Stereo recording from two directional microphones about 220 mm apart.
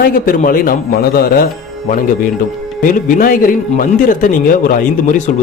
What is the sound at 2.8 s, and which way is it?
A man's voice, 40° left (ahead or behind).